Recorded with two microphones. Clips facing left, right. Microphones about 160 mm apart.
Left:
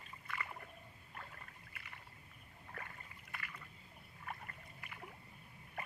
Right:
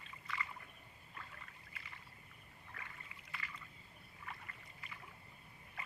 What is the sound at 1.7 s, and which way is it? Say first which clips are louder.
Rowboat: even; 60° left (ahead or behind).